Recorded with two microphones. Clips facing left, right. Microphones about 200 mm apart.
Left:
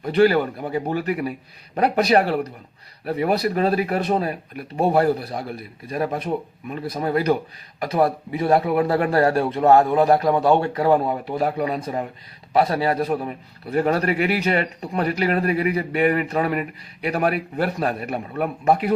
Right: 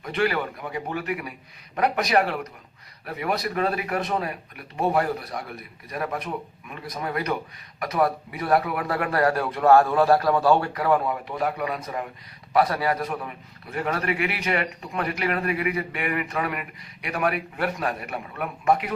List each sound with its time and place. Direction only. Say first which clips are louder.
0.0 s a man's voice: left 8 dB; 35° left (ahead or behind)